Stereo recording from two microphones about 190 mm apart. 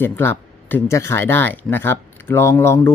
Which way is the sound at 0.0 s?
10° left (ahead or behind).